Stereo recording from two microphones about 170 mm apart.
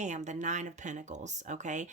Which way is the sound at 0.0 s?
45° right (ahead or behind).